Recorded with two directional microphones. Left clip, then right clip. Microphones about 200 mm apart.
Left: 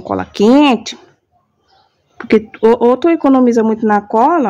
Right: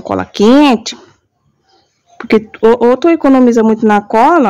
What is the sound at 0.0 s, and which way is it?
Speech, 15° right (ahead or behind).